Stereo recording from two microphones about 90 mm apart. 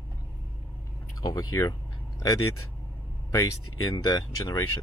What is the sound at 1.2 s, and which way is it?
Speech, 40° left (ahead or behind).